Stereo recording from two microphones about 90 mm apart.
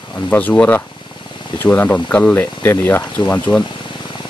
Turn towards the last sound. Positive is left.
turn(degrees=20)  # may be behind; listen again after turning